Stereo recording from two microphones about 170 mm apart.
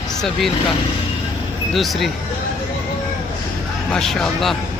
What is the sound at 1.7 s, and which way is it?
Speech, centre (ahead or behind).